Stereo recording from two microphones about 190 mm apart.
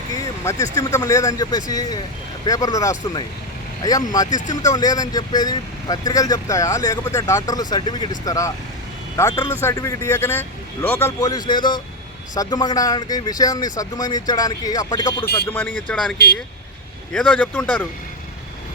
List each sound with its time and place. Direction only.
0.4 s a man's voice: 15° left (ahead or behind)
4.3 s speech: 40° left (ahead or behind)
4.6 s a man's voice: 15° left (ahead or behind)
16.1 s speech: 55° left (ahead or behind)
17.1 s a man's voice: 5° left (ahead or behind)